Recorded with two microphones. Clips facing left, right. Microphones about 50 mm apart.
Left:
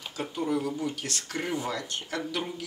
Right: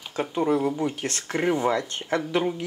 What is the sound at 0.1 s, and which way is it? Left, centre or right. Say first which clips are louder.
Speech: right 6 dB; right.